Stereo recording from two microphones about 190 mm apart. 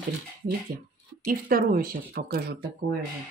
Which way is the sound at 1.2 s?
45° right (ahead or behind).